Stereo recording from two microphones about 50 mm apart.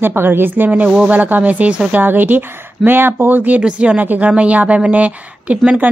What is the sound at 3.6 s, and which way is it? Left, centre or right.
Speech, right.